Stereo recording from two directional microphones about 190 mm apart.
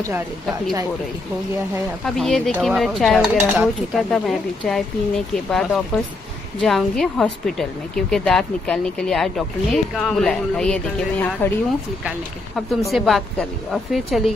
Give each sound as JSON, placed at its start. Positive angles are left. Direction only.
{"t": 2.0, "sound": "speech", "side_deg": 0}
{"t": 12.5, "sound": "speech", "side_deg": 0}